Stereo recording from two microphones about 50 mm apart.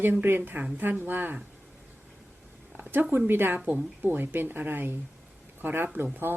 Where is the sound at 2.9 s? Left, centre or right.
Right.